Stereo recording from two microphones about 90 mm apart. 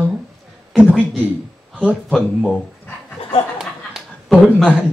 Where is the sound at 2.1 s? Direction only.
Centre (ahead or behind).